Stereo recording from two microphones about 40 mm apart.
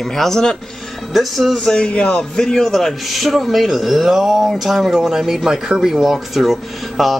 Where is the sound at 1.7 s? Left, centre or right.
Left.